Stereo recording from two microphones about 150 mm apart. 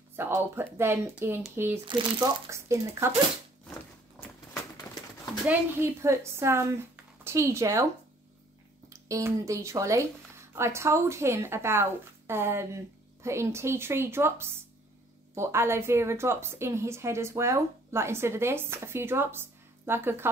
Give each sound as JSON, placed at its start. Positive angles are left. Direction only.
{"t": 0.1, "sound": "a woman's voice", "side_deg": -15}
{"t": 1.9, "sound": "speech", "side_deg": -30}
{"t": 4.9, "sound": "a sound", "side_deg": 20}
{"t": 5.5, "sound": "a woman's voice", "side_deg": -15}
{"t": 8.8, "sound": "a woman's voice", "side_deg": -20}